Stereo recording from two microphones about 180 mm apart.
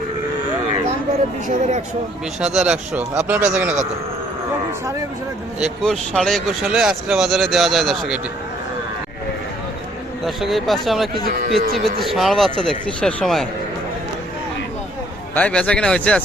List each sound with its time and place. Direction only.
1.5 s speech: 45° right (ahead or behind)
2.4 s speech: 5° right (ahead or behind)
5.5 s speech: centre (ahead or behind)
10.2 s speech: centre (ahead or behind)
12.1 s speech: centre (ahead or behind)
15.4 s speech: 5° left (ahead or behind)